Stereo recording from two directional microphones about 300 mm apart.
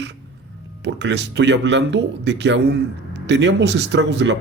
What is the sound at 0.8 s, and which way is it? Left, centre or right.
Speech, right.